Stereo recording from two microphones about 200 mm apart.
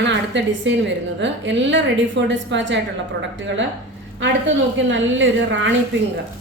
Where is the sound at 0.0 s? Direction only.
60° right (ahead or behind).